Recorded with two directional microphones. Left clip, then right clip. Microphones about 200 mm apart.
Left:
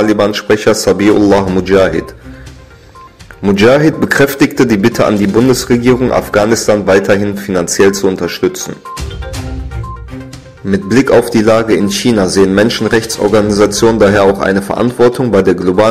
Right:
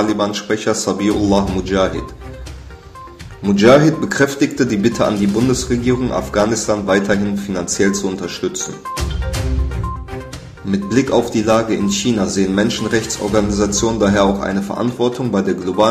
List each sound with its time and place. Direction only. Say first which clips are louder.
0.0 s speech: left 7 dB; 40° left (ahead or behind)
3.5 s speech: left 2 dB; 40° left (ahead or behind)
10.9 s speech: left 7 dB; 40° left (ahead or behind)